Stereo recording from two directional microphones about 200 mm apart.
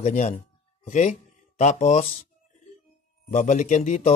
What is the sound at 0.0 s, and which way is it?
Speech, 35° left (ahead or behind).